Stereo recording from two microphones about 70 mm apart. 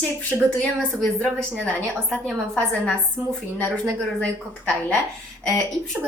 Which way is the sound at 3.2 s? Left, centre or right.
Centre.